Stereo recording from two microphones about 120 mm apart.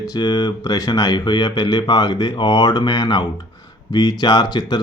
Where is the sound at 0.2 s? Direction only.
35° left (ahead or behind).